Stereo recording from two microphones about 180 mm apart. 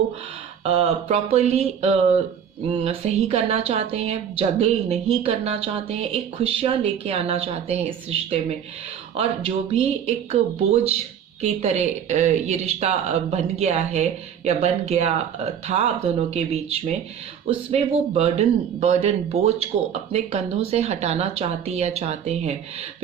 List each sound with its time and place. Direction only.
0.6 s speech: 35° right (ahead or behind)
10.1 s speech: 35° right (ahead or behind)